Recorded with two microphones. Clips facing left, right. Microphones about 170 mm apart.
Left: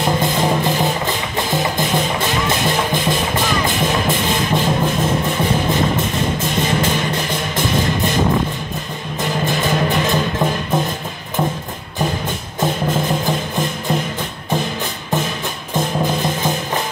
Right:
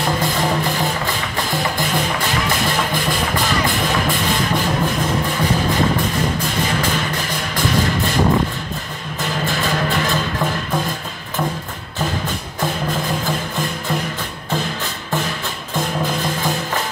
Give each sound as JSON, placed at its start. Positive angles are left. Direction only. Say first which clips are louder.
{"t": 0.0, "sound": "music", "louder": "left 2 dB", "side_deg": 20}
{"t": 9.2, "sound": "music", "louder": "left 2 dB", "side_deg": 20}
{"t": 12.5, "sound": "music", "louder": "left 4 dB", "side_deg": 20}
{"t": 15.7, "sound": "music", "louder": "left 3 dB", "side_deg": 20}